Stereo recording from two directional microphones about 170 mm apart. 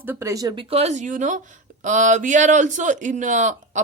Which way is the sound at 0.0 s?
15° right (ahead or behind).